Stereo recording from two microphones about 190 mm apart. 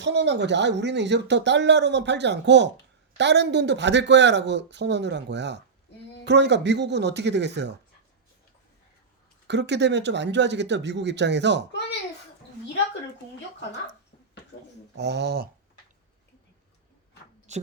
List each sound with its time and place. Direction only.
0.0 s speech: 65° right (ahead or behind)
9.5 s speech: 65° right (ahead or behind)
14.9 s speech: 65° right (ahead or behind)
17.5 s a sound: 35° right (ahead or behind)